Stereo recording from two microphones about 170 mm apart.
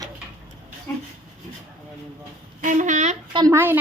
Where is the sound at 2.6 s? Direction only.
45° right (ahead or behind).